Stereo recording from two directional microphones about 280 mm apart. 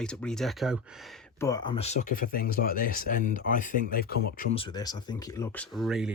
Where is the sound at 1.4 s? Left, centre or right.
Centre; by 4.5 s left.